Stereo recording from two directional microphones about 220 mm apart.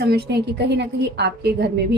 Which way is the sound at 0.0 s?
45° right (ahead or behind).